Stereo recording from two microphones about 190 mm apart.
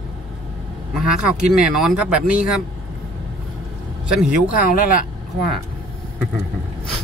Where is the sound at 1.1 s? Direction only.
5° right (ahead or behind).